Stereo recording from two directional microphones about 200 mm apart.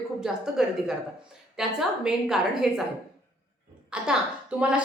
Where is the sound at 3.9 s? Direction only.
5° right (ahead or behind).